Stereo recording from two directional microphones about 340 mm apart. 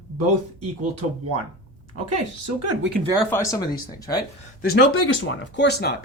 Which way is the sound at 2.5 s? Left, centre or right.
Right.